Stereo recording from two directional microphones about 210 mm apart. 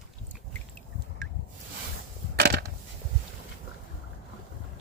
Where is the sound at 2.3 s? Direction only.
50° right (ahead or behind).